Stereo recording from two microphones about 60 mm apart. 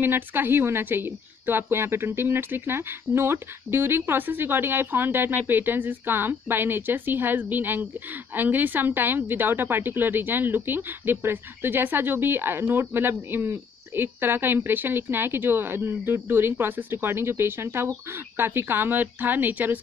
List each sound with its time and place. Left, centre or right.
0.0 s a woman's voice: right